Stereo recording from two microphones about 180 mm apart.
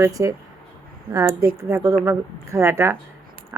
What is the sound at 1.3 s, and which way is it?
Speech, 55° right (ahead or behind).